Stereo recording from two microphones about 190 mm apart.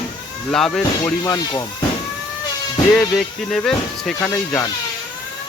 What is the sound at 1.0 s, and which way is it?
Speech, 20° left (ahead or behind).